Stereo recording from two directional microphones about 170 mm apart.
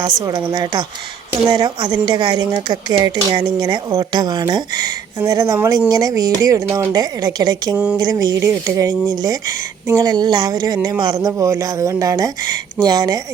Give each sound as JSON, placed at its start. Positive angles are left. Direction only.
{"t": 0.3, "sound": "speech", "side_deg": -25}